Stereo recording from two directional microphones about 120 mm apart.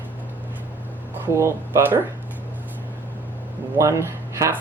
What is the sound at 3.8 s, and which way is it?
Speech, 25° right (ahead or behind).